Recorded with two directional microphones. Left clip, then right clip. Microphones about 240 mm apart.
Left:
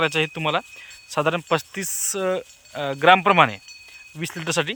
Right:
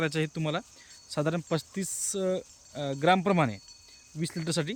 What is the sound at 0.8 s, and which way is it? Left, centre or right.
Speech, left.